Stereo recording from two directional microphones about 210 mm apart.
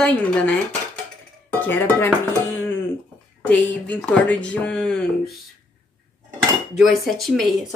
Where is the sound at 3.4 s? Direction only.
5° left (ahead or behind).